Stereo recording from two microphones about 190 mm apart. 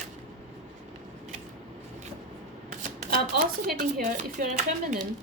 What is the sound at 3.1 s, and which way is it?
Speech, 50° right (ahead or behind).